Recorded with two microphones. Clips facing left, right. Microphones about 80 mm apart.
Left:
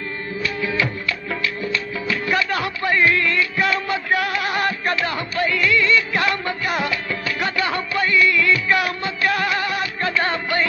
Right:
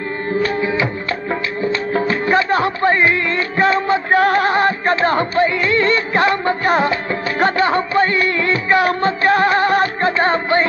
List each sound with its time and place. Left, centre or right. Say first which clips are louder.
0.6 s music: right 4 dB; right
1.9 s music: right 8 dB; right